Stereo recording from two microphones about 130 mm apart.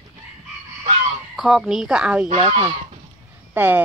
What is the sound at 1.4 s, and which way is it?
Speech, 5° right (ahead or behind).